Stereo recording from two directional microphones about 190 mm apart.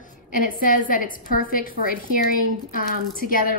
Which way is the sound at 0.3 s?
45° left (ahead or behind).